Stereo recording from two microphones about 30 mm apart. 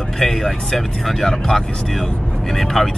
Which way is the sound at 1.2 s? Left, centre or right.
Left.